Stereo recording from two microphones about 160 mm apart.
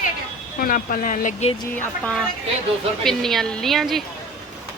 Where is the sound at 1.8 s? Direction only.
5° left (ahead or behind).